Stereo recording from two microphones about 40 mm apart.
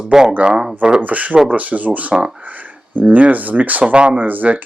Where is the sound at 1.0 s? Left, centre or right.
Right.